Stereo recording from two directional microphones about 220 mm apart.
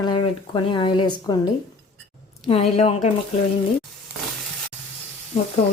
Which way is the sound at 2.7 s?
30° left (ahead or behind).